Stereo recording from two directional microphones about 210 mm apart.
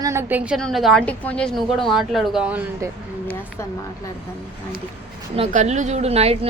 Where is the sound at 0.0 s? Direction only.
15° right (ahead or behind).